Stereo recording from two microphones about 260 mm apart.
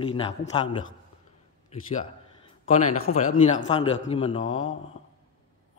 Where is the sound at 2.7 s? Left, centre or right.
Left.